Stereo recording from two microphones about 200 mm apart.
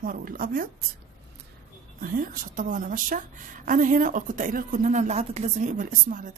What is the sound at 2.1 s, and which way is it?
A woman's voice, 45° right (ahead or behind).